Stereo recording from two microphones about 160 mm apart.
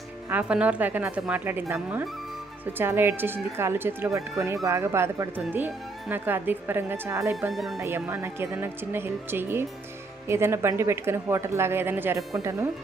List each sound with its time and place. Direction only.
0.3 s speech: 10° right (ahead or behind)
7.5 s speech: centre (ahead or behind)
7.8 s speech: 15° right (ahead or behind)